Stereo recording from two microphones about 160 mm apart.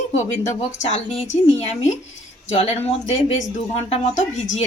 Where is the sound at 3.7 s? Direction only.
40° left (ahead or behind).